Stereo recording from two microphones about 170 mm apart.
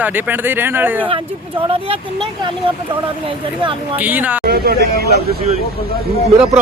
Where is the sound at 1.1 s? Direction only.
35° right (ahead or behind).